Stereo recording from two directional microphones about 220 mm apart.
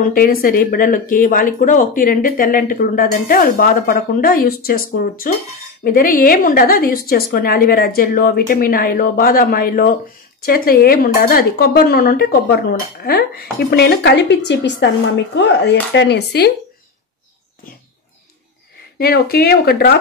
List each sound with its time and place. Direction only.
0.0 s speech: 40° left (ahead or behind)
18.9 s speech: 45° left (ahead or behind)